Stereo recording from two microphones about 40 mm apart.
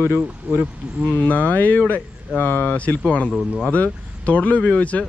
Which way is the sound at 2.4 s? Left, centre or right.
Left.